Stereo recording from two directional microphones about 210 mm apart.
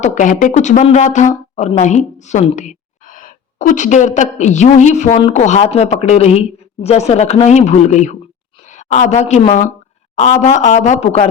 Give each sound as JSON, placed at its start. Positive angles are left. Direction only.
{"t": 0.0, "sound": "a woman's voice", "side_deg": 35}